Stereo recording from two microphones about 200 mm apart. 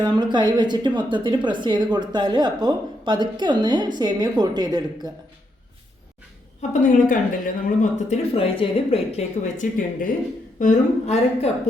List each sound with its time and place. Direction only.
0.0 s a woman's voice: 20° right (ahead or behind)
6.6 s speech: 40° left (ahead or behind)